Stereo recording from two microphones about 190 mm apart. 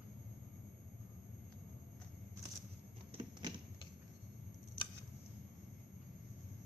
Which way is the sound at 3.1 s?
25° right (ahead or behind).